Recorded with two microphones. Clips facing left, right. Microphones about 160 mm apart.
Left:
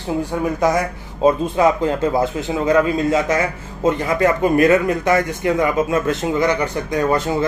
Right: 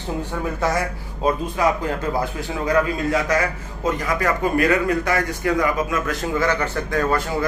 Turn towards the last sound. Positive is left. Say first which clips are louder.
# left 3 dB
turn(degrees=20)  # may be behind; listen again after turning